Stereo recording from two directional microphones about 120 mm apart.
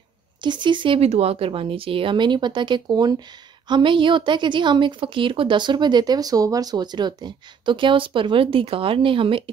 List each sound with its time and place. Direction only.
0.4 s a woman's voice: 40° right (ahead or behind)